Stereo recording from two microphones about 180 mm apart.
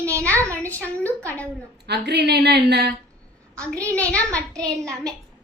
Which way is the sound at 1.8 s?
70° right (ahead or behind).